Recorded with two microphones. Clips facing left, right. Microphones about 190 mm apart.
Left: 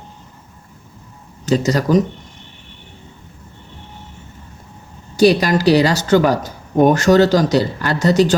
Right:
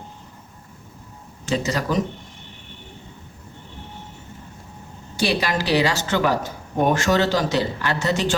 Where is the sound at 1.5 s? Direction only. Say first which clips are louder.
Left 8 dB; 40° left (ahead or behind).